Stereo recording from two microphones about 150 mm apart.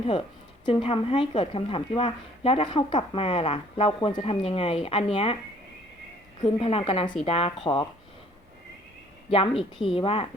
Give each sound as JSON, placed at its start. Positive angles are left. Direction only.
{"t": 0.1, "sound": "speech", "side_deg": 40}
{"t": 6.4, "sound": "speech", "side_deg": 40}
{"t": 9.3, "sound": "speech", "side_deg": 40}